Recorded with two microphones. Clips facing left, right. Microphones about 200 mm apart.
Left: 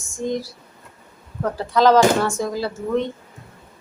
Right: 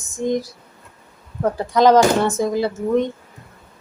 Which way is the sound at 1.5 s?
15° right (ahead or behind).